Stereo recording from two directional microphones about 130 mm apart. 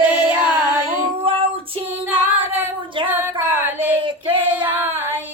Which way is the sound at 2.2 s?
15° right (ahead or behind).